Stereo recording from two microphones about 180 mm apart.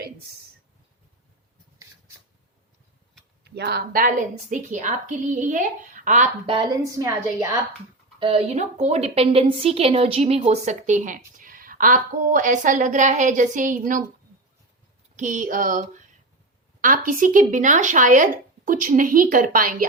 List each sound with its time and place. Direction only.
3.4 s a woman's voice: 65° right (ahead or behind); by 6.7 s 30° right (ahead or behind)
7.0 s a woman's voice: 15° right (ahead or behind)
8.2 s a woman's voice: 35° right (ahead or behind)
15.1 s a sound: 45° right (ahead or behind)
16.8 s a woman's voice: 50° right (ahead or behind)